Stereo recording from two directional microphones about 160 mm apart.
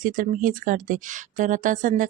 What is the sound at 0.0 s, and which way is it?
Speech, 55° right (ahead or behind).